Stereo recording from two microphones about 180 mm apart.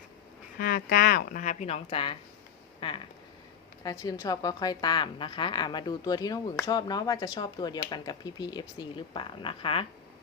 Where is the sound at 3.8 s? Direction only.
20° left (ahead or behind).